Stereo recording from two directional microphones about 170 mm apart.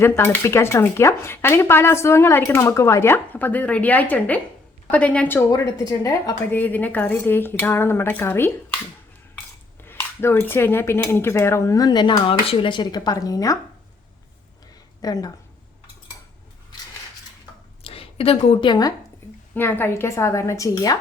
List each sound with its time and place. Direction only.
0.0 s speech: 15° left (ahead or behind)
9.8 s speech: 15° left (ahead or behind)
15.0 s a woman's voice: 20° left (ahead or behind)
17.8 s a woman's voice: 35° left (ahead or behind)
19.5 s speech: 10° left (ahead or behind)